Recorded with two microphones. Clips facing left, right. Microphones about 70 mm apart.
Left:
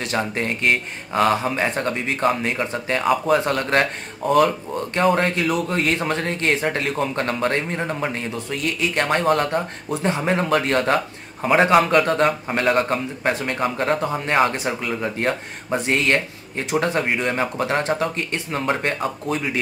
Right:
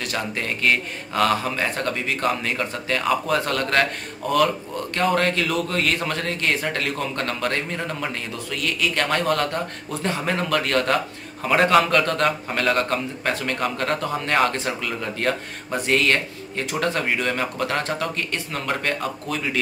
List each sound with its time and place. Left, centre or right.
0.0 s a man's voice: left
5.1 s a man's voice: centre